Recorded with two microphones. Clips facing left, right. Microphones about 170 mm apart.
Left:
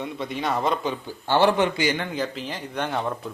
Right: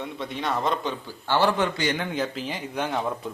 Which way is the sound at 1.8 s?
Centre (ahead or behind).